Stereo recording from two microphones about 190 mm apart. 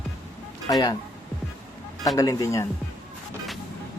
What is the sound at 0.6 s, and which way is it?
Speech, 20° left (ahead or behind).